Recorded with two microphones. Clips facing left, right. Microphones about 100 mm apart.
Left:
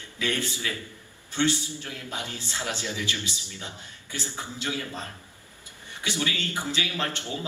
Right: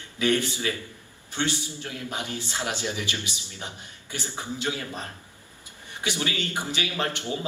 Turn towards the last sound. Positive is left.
turn(degrees=-20)  # may be behind; listen again after turning